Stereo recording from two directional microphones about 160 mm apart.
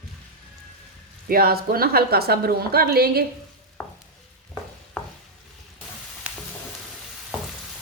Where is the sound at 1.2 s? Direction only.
70° right (ahead or behind).